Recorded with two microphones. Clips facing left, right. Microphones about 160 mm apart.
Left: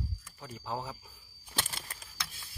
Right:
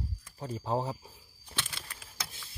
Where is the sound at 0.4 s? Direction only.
35° right (ahead or behind).